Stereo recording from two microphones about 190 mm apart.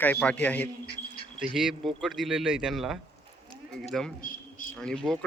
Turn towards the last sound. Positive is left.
turn(degrees=5)  # may be behind; listen again after turning